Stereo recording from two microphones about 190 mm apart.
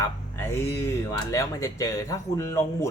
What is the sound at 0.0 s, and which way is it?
Speech, 15° left (ahead or behind).